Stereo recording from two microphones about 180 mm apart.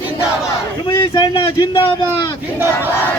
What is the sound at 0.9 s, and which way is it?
Speech, 30° left (ahead or behind).